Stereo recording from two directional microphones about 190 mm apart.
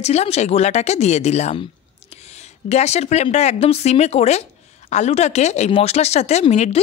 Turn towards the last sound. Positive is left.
turn(degrees=35)  # may be behind; listen again after turning